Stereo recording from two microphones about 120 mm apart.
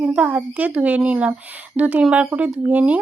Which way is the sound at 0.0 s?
10° right (ahead or behind).